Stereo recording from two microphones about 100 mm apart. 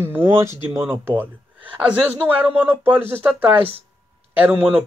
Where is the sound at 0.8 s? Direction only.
20° right (ahead or behind).